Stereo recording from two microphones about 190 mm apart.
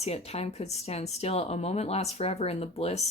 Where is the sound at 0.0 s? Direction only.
35° left (ahead or behind).